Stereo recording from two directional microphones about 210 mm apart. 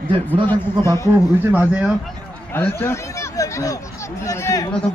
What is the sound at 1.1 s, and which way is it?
Speech, 10° right (ahead or behind).